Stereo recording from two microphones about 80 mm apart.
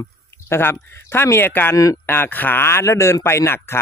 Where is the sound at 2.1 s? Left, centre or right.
Left.